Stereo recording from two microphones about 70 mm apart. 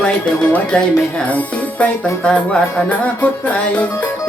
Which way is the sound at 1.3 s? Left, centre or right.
Left.